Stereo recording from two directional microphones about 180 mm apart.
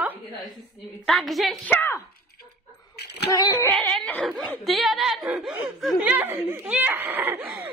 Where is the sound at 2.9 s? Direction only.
65° left (ahead or behind).